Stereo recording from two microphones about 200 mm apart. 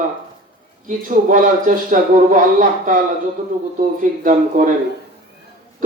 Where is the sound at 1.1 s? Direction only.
40° right (ahead or behind).